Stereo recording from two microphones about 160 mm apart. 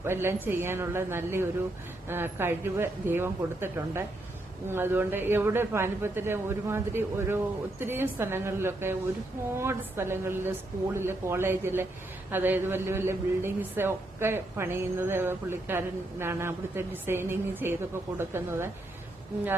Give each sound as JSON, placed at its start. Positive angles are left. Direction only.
{"t": 0.0, "sound": "a woman's voice", "side_deg": -15}